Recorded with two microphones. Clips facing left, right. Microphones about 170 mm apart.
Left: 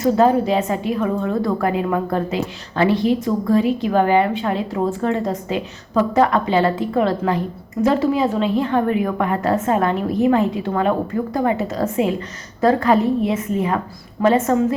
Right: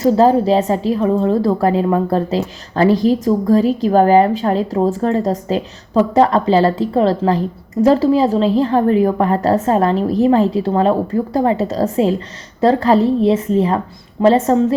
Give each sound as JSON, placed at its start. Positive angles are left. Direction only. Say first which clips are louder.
{"t": 0.0, "sound": "a woman's voice", "louder": "right 3 dB", "side_deg": -35}